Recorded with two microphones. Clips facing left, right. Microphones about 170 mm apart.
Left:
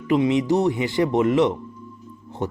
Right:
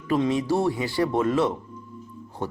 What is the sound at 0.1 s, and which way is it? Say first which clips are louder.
Speech: left 4 dB; 20° left (ahead or behind).